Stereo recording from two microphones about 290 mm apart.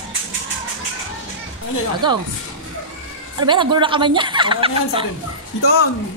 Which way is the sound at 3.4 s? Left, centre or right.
Centre.